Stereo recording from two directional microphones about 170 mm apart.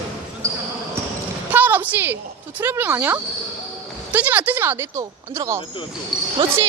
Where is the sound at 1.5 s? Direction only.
10° right (ahead or behind).